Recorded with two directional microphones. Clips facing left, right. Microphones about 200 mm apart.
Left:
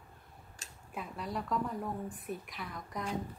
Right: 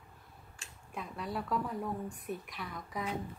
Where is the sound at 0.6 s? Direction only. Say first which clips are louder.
Even; 40° left (ahead or behind).